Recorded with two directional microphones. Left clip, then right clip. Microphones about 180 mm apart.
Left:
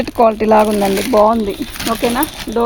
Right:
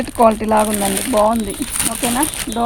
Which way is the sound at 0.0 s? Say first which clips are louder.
Left 1 dB; 45° left (ahead or behind).